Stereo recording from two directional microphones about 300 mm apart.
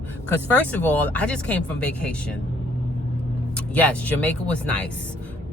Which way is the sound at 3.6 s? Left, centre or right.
Centre.